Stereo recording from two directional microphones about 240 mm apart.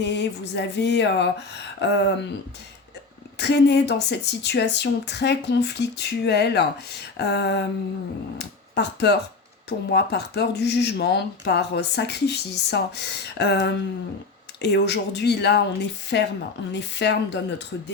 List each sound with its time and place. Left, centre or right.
0.0 s speech: left
3.3 s speech: left